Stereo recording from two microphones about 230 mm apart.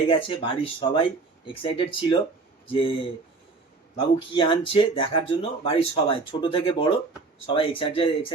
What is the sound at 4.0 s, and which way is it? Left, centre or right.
Speech, left.